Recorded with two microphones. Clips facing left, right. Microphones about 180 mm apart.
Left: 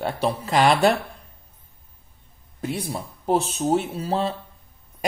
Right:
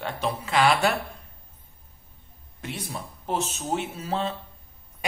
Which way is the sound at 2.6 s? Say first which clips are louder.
Left 6 dB; 35° left (ahead or behind).